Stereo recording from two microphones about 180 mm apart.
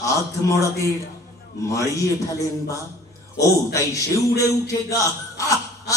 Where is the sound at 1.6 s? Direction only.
15° left (ahead or behind).